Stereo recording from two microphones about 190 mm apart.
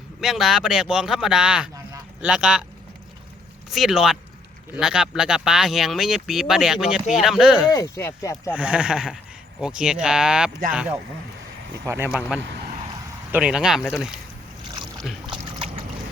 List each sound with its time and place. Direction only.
0.2 s speech: centre (ahead or behind)
3.7 s speech: centre (ahead or behind)
7.7 s speech: 15° left (ahead or behind)
8.5 s speech: 5° right (ahead or behind)
12.4 s speech: 65° right (ahead or behind)
13.3 s speech: 5° right (ahead or behind)
15.5 s a sound: 30° right (ahead or behind)